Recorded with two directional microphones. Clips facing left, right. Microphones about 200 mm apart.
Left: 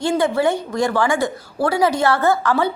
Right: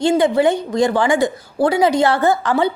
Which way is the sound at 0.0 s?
20° right (ahead or behind).